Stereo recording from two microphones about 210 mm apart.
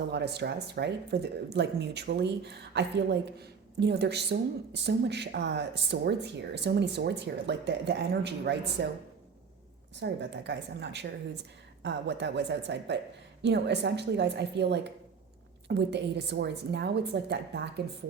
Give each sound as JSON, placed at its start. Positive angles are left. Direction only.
{"t": 0.1, "sound": "speech", "side_deg": -50}
{"t": 10.0, "sound": "a woman's voice", "side_deg": -55}